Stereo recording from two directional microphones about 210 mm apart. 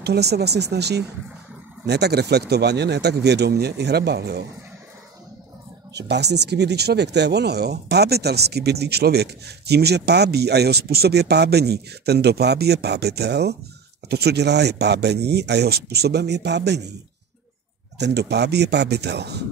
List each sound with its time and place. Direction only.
0.0 s speech: 50° right (ahead or behind)
5.9 s speech: 50° right (ahead or behind)
17.9 s speech: 55° right (ahead or behind)